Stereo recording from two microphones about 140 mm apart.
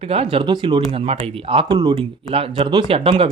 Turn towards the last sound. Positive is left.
turn(degrees=-45)  # may be behind; listen again after turning